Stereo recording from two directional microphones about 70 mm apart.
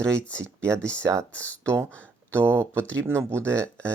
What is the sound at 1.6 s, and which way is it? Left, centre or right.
Speech, right.